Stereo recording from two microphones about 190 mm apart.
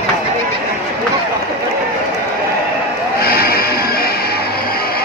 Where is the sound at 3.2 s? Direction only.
55° left (ahead or behind).